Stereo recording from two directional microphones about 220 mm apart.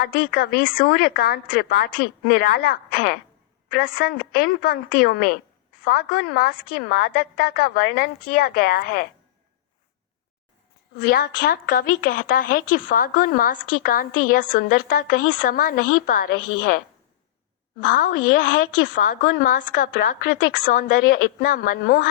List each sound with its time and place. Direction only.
0.0 s a woman's voice: 40° left (ahead or behind)
10.9 s a woman's voice: 45° left (ahead or behind)